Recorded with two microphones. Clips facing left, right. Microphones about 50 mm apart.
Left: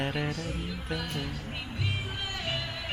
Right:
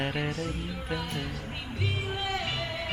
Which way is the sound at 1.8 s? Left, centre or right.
Centre.